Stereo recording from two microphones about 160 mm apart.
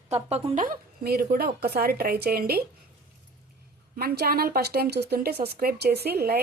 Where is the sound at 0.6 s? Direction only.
70° right (ahead or behind).